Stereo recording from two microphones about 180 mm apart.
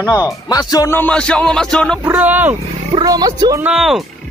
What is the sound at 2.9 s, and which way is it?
Speech, 20° right (ahead or behind).